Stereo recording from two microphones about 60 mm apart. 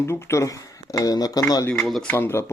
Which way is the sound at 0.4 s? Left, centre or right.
Left.